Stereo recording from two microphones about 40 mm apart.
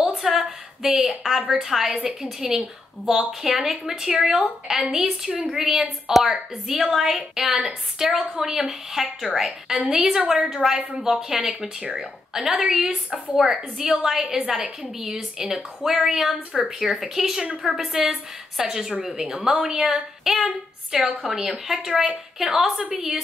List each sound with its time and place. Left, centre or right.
0.1 s a sound: centre
1.5 s a woman's voice: centre
11.8 s speech: right
12.4 s a woman's voice: centre